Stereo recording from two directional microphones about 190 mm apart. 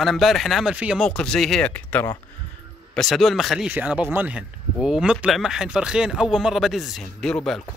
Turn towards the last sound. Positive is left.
turn(degrees=5)  # may be behind; listen again after turning